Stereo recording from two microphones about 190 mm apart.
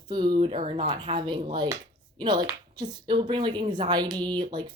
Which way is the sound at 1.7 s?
25° right (ahead or behind).